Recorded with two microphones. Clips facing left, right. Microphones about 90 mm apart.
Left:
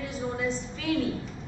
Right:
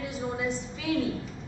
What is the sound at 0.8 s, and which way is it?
Speech, 5° right (ahead or behind).